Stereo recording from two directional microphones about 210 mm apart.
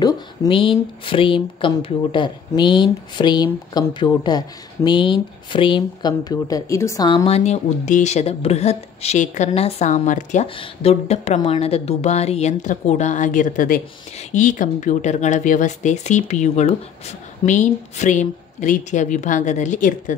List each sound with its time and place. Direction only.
0.0 s speech: 20° left (ahead or behind)